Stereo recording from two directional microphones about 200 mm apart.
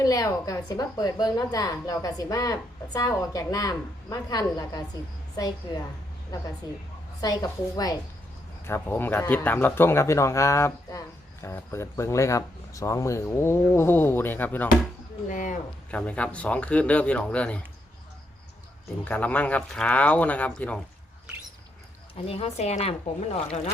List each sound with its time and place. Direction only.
0.0 s a woman's voice: 15° left (ahead or behind)
7.2 s a woman's voice: 20° left (ahead or behind)
15.3 s speech: 40° left (ahead or behind)
15.9 s a woman's voice: 5° left (ahead or behind)
19.0 s a woman's voice: 10° left (ahead or behind)
22.3 s speech: 30° left (ahead or behind)